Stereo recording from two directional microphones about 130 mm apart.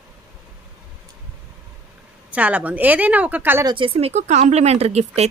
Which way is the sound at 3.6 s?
40° right (ahead or behind).